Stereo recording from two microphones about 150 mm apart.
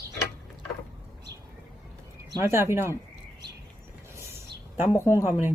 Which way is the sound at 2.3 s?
15° right (ahead or behind).